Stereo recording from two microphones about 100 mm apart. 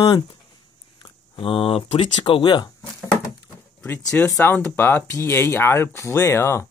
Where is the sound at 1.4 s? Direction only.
65° left (ahead or behind); by 2.7 s 50° left (ahead or behind).